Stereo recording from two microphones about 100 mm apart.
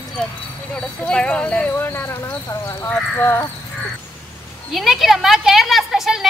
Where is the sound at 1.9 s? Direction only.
25° left (ahead or behind).